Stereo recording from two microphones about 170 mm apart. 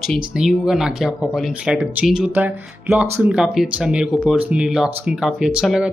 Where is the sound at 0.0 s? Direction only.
Centre (ahead or behind).